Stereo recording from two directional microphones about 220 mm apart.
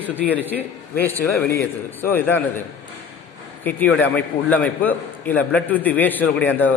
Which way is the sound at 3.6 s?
5° left (ahead or behind).